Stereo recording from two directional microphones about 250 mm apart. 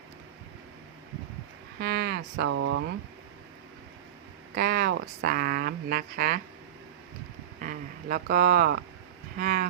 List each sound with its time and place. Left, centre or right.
1.8 s speech: right
4.5 s speech: right
7.6 s speech: right